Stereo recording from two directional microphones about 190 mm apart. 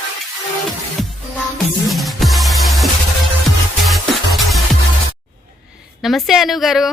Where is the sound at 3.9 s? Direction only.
Centre (ahead or behind).